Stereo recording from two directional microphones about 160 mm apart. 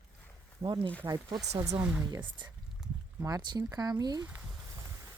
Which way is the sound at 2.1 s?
30° right (ahead or behind).